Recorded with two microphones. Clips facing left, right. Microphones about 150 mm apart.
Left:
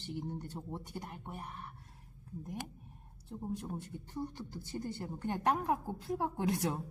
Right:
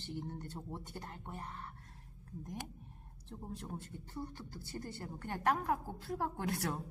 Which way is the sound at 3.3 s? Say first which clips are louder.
Left 5 dB; 15° left (ahead or behind).